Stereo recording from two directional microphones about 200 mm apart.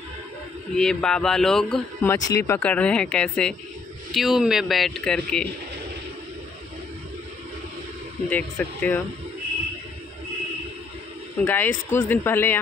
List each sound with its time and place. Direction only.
0.7 s a man's voice: 5° left (ahead or behind)
2.0 s a man's voice: 15° left (ahead or behind)
8.3 s speech: 5° left (ahead or behind)
11.4 s speech: 10° left (ahead or behind)